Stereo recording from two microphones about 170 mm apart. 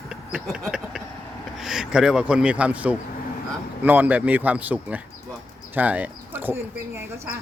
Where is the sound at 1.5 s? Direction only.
Centre (ahead or behind).